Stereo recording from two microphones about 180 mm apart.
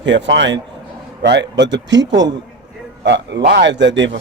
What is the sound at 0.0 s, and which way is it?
Speech, 90° right.